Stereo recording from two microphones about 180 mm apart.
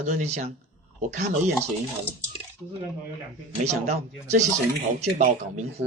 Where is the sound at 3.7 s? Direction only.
40° right (ahead or behind).